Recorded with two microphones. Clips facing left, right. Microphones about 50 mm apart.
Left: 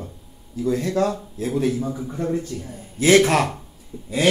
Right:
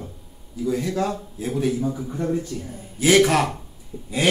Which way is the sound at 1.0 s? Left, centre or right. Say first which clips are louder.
Left 3 dB; right.